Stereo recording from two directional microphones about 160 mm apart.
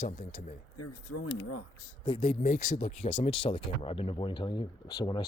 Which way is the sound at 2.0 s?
40° left (ahead or behind).